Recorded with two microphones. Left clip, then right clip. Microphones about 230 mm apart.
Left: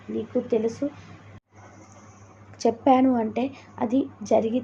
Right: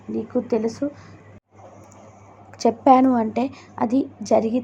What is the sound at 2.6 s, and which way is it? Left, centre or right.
A woman's voice, centre.